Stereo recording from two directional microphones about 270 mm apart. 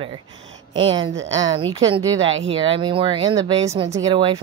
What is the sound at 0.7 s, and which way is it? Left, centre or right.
A woman's voice, centre.